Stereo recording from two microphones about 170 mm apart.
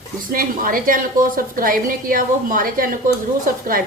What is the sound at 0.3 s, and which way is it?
A woman's voice, 55° right (ahead or behind).